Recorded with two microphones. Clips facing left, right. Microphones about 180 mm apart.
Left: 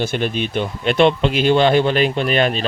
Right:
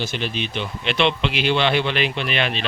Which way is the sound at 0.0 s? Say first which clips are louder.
Left 6 dB; 50° left (ahead or behind).